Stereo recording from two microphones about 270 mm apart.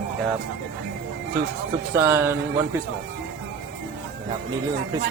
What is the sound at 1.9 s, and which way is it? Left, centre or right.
Speech, centre.